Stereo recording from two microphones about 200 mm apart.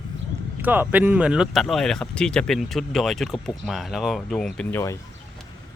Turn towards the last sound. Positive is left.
turn(degrees=10)  # may be behind; listen again after turning